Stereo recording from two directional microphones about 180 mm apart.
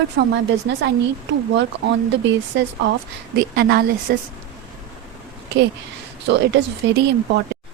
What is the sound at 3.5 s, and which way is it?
Speech, 60° right (ahead or behind).